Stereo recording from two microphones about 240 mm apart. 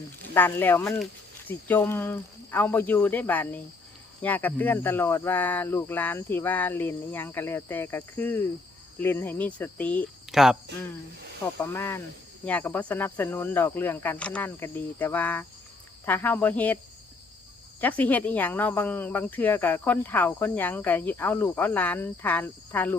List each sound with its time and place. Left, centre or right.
0.3 s speech: centre
11.7 s speech: centre
17.7 s speech: centre